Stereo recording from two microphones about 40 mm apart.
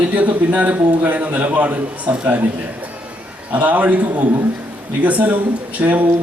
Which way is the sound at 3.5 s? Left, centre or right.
Right.